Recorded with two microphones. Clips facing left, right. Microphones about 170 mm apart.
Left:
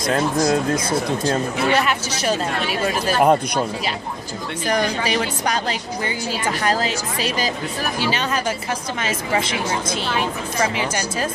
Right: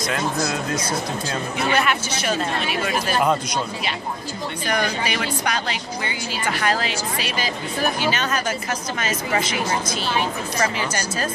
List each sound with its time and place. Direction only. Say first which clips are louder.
1.3 s speech: left 2 dB; 40° left (ahead or behind)
3.2 s speech: left 6 dB; 50° left (ahead or behind)
4.6 s speech: left 3 dB; 35° left (ahead or behind)
6.8 s speech: left 3 dB; 40° left (ahead or behind)
9.3 s speech: left 2 dB; 25° left (ahead or behind)
10.6 s speech: left 2 dB; 10° left (ahead or behind)